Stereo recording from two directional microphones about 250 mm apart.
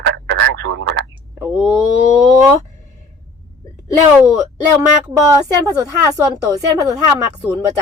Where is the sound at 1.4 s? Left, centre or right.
Centre.